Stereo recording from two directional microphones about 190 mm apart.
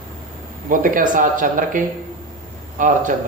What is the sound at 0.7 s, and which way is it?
Speech, 45° right (ahead or behind).